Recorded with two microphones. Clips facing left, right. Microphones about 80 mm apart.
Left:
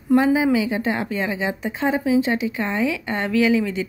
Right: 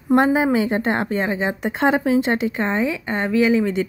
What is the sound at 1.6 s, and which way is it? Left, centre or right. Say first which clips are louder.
Speech: right 4 dB; right.